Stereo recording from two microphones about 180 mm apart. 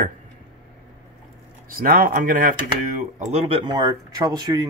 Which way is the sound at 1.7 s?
50° right (ahead or behind).